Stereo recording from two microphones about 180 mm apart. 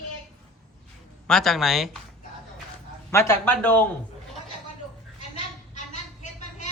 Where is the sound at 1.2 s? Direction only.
Centre (ahead or behind).